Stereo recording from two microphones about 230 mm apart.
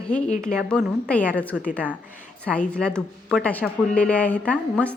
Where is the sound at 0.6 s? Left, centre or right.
Centre.